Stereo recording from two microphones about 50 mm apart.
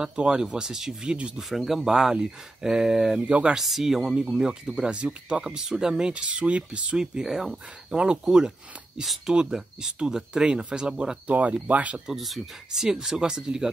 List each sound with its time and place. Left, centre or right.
0.0 s speech: centre
1.5 s speech: centre
3.2 s speech: right
3.5 s speech: centre
9.0 s speech: centre
9.3 s speech: centre
11.2 s speech: right
12.1 s speech: centre